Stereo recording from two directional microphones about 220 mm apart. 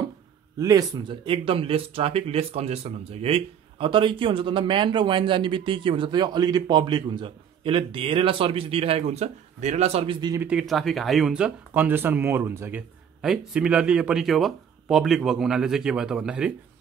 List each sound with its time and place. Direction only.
0.6 s speech: 15° right (ahead or behind)
10.4 s speech: centre (ahead or behind)